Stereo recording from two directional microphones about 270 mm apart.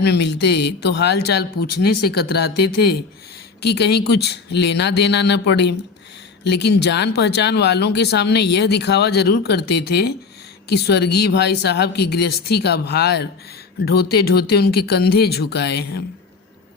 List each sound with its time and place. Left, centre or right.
0.0 s speech: left